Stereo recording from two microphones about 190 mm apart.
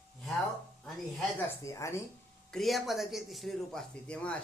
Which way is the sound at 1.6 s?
15° left (ahead or behind).